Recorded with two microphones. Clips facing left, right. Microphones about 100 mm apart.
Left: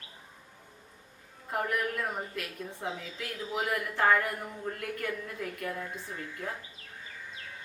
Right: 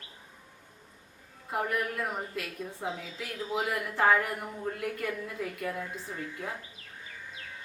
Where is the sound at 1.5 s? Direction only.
5° right (ahead or behind).